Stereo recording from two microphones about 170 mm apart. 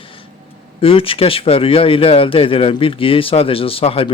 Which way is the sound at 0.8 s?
30° left (ahead or behind).